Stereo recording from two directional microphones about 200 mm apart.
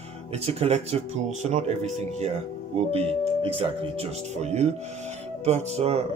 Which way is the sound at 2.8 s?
30° right (ahead or behind).